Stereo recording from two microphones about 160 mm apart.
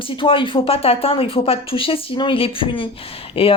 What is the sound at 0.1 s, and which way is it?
Speech, 35° left (ahead or behind).